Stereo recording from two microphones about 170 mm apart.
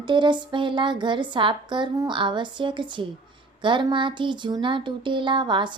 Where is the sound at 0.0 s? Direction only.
25° right (ahead or behind).